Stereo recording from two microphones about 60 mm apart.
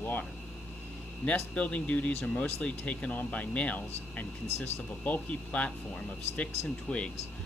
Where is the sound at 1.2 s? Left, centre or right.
Left.